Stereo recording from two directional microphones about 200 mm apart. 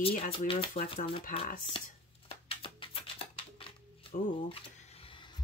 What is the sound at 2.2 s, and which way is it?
Music, 30° left (ahead or behind).